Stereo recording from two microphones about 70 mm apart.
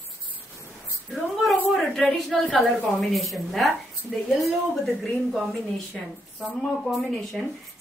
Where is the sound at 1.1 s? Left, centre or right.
Centre.